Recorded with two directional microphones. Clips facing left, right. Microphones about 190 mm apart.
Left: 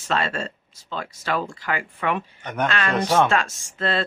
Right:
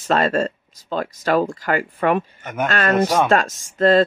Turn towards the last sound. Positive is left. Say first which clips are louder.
# right 10 dB
turn(degrees=-40)  # may be behind; listen again after turning